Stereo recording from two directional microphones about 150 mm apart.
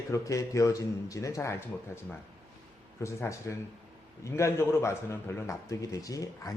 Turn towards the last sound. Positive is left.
turn(degrees=25)  # may be behind; listen again after turning